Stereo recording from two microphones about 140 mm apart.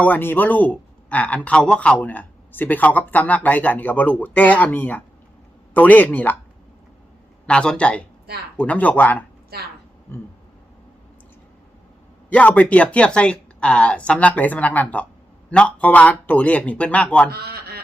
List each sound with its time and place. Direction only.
0.0 s a man's voice: 15° left (ahead or behind)
7.4 s a man's voice: 5° left (ahead or behind)
9.5 s speech: 90° right
12.3 s a man's voice: 10° left (ahead or behind)
17.3 s speech: 90° right